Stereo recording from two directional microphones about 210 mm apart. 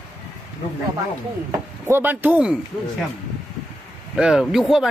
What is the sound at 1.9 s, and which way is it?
Speech, 10° right (ahead or behind).